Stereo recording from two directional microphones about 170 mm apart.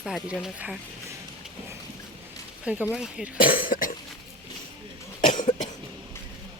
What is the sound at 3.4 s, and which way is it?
Cough, 55° left (ahead or behind).